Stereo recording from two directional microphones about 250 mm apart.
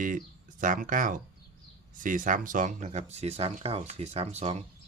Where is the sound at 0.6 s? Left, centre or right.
Right.